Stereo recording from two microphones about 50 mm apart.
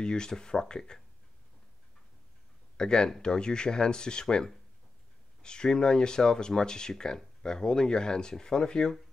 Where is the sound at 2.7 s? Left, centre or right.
Centre.